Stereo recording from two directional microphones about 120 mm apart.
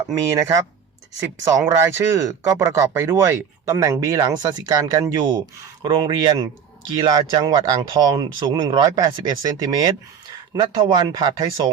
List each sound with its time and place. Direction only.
0.1 s speech: 25° right (ahead or behind)